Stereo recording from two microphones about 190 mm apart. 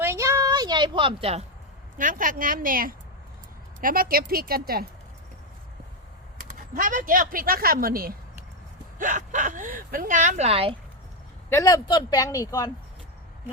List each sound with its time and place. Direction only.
0.0 s a sound: 15° right (ahead or behind); by 1.5 s 30° right (ahead or behind)
2.0 s speech: 45° right (ahead or behind)
6.7 s speech: 45° right (ahead or behind)
11.4 s speech: 15° left (ahead or behind)